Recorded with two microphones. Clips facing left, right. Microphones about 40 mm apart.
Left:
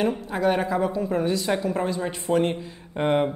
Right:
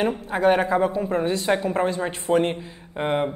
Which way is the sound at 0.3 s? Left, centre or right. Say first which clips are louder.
Right 7 dB; right.